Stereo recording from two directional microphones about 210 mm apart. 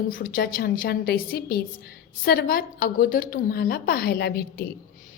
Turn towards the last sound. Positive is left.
turn(degrees=50)  # may be behind; listen again after turning